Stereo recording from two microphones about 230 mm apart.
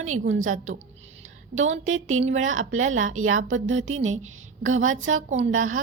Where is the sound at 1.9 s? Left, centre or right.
Right.